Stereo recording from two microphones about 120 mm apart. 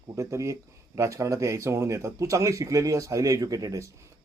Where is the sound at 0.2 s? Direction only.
25° right (ahead or behind).